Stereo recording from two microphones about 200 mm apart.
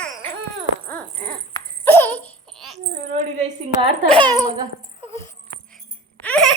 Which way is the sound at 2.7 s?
35° right (ahead or behind).